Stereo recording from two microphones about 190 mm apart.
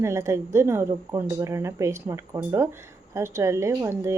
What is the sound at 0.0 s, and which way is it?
Speech, 15° right (ahead or behind).